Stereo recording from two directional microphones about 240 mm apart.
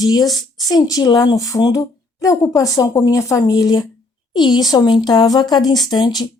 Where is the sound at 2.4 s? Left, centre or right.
Centre.